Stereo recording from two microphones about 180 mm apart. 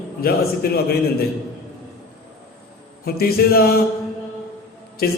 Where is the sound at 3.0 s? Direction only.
60° left (ahead or behind).